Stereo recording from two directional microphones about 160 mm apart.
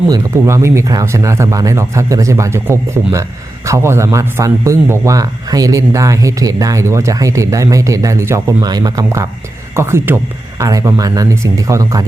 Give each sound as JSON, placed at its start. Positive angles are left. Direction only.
{"t": 0.1, "sound": "a man's voice", "side_deg": -15}